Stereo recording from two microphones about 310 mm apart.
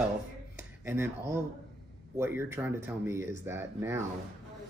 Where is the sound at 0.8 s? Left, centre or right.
Centre.